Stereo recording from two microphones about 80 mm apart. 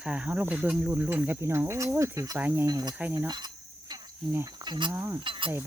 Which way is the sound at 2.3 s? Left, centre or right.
Right.